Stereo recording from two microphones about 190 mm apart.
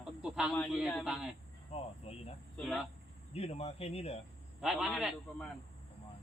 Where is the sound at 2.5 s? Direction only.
Centre (ahead or behind).